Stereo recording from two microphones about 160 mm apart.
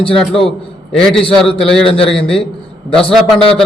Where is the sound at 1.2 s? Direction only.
Centre (ahead or behind).